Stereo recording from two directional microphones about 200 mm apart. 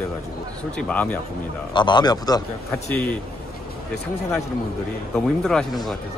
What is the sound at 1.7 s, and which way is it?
Speech, 20° left (ahead or behind).